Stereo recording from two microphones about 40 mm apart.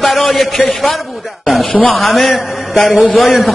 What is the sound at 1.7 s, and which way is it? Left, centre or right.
Speech, left.